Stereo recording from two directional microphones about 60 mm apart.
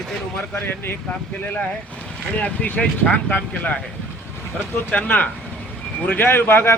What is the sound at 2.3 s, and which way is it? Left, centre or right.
Speech, left.